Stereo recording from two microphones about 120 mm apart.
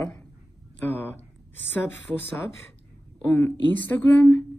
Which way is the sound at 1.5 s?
15° left (ahead or behind).